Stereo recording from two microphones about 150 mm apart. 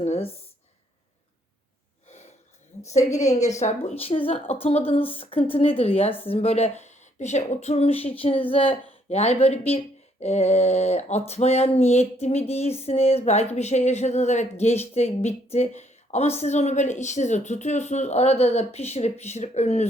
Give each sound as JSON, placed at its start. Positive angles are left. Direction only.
{"t": 0.0, "sound": "speech", "side_deg": 45}
{"t": 2.0, "sound": "snort", "side_deg": 50}
{"t": 2.9, "sound": "a woman's voice", "side_deg": 50}